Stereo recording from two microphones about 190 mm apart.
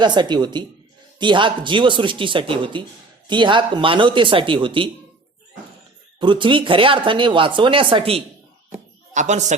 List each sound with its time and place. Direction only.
0.0 s speech: 25° right (ahead or behind)
6.1 s speech: 25° right (ahead or behind)
8.7 s a sound: 40° right (ahead or behind)